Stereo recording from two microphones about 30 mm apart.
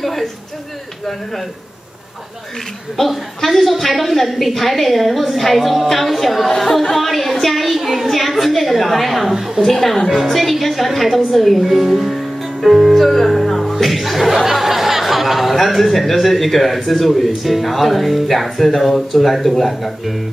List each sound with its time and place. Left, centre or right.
0.0 s a sound: centre
3.4 s a child's voice: centre
9.3 s a woman's voice: centre
9.7 s speech: centre